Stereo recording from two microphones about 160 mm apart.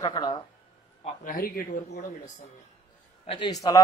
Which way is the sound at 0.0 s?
25° left (ahead or behind).